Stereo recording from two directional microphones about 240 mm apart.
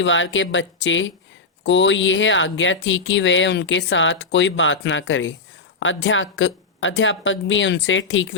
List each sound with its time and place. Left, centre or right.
0.0 s speech: left